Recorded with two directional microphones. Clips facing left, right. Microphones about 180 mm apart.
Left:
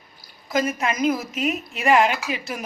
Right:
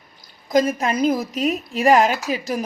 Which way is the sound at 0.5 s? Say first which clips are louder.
Right 5 dB; 35° right (ahead or behind).